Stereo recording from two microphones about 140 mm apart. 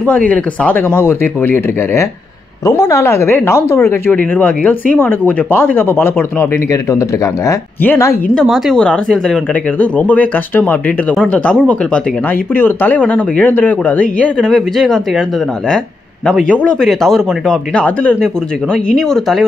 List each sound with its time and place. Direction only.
0.0 s speech: 10° left (ahead or behind)
8.4 s speech: 5° left (ahead or behind)
16.3 s speech: 10° left (ahead or behind)